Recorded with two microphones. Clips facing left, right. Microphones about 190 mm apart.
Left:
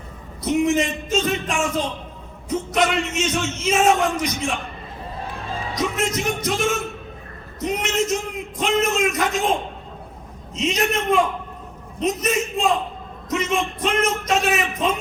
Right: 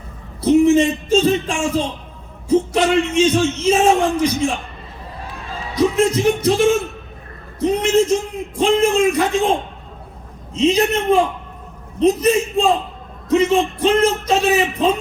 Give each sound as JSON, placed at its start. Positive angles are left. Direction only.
{"t": 0.4, "sound": "a man's voice", "side_deg": -30}
{"t": 5.7, "sound": "a man's voice", "side_deg": -30}
{"t": 10.5, "sound": "a man's voice", "side_deg": -30}